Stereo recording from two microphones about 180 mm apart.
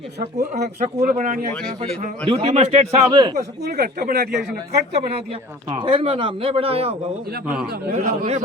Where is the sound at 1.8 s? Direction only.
35° right (ahead or behind).